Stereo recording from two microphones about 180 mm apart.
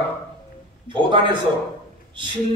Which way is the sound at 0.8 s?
25° right (ahead or behind).